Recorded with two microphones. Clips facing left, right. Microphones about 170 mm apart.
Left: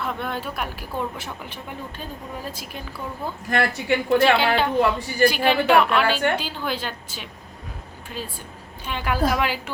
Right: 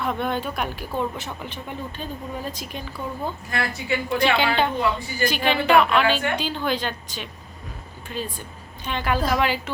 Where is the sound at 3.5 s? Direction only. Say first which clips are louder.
Left 5 dB; 60° left (ahead or behind).